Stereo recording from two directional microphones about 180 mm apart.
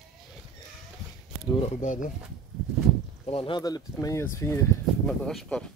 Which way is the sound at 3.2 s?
30° left (ahead or behind).